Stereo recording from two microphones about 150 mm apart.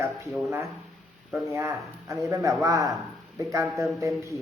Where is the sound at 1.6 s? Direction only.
20° right (ahead or behind).